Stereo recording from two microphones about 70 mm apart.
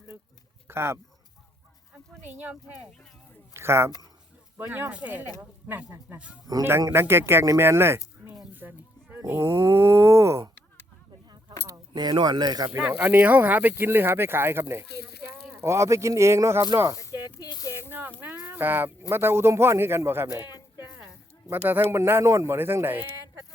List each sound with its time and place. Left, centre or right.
0.7 s speech: right
2.3 s speech: centre
3.5 s speech: right
4.9 s speech: centre
6.9 s speech: right
9.1 s speech: right
11.6 s speech: right
12.8 s speech: right
17.0 s snake: left
17.8 s speech: right
21.5 s speech: right
21.9 s speech: right